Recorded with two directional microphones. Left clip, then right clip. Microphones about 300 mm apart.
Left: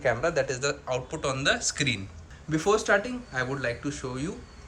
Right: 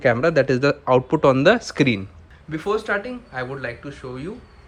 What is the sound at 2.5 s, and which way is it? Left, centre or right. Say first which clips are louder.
Speech: right 1 dB; centre.